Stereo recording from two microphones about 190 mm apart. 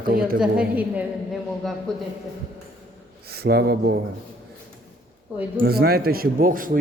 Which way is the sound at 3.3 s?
55° right (ahead or behind).